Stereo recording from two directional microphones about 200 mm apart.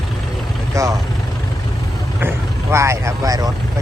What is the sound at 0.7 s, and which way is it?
Vehicle, 15° right (ahead or behind).